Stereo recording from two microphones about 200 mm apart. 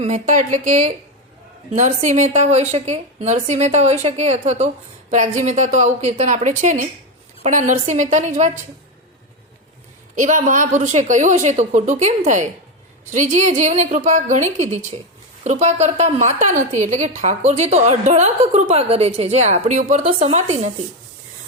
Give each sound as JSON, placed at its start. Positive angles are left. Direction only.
{"t": 0.0, "sound": "a woman's voice", "side_deg": -40}
{"t": 10.2, "sound": "a woman's voice", "side_deg": -40}